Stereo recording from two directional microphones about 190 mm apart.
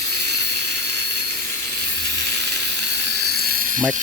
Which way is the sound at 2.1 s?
60° right (ahead or behind).